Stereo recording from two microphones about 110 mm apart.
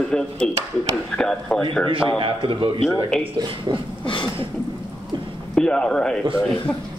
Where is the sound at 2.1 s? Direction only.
50° right (ahead or behind).